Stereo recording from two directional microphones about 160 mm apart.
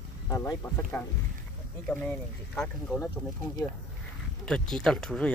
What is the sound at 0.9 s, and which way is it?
Speech, 5° left (ahead or behind).